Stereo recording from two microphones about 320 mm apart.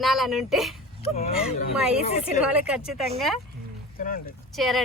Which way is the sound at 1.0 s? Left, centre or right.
Centre.